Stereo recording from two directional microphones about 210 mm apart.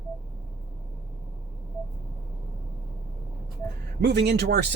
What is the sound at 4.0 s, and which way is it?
Speech, 50° right (ahead or behind).